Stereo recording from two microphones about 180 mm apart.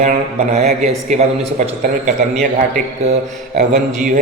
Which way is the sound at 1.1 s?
40° right (ahead or behind).